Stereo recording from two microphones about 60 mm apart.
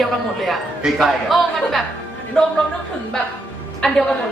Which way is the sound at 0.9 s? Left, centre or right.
Centre.